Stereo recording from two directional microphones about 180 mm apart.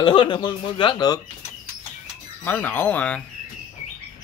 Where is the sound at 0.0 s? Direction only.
25° left (ahead or behind).